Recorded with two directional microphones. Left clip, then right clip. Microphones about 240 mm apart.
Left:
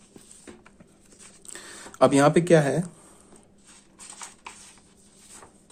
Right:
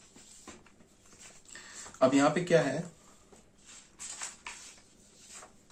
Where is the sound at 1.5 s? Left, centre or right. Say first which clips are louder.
Left 6 dB; left.